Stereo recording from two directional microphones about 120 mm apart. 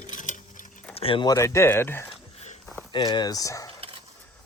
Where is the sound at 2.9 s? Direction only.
40° left (ahead or behind).